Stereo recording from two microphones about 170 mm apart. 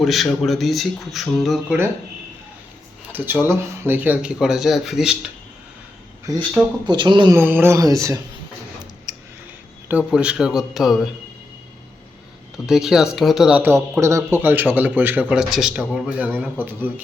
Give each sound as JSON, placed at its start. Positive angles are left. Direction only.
{"t": 0.0, "sound": "speech", "side_deg": 0}
{"t": 3.1, "sound": "speech", "side_deg": -10}
{"t": 6.8, "sound": "speech", "side_deg": -30}
{"t": 7.3, "sound": "speech", "side_deg": -10}
{"t": 9.1, "sound": "a sound", "side_deg": -20}
{"t": 10.1, "sound": "speech", "side_deg": -5}
{"t": 12.6, "sound": "speech", "side_deg": -5}